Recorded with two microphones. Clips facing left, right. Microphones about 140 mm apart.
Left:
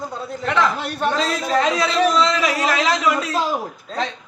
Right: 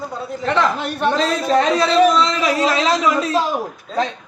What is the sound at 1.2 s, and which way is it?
A man's voice, 35° right (ahead or behind).